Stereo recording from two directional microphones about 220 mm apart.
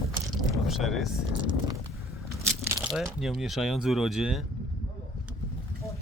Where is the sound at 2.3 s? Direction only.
15° right (ahead or behind).